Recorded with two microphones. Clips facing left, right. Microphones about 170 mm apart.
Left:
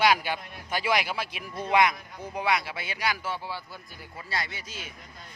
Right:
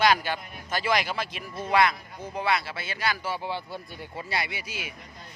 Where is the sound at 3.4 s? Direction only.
25° right (ahead or behind).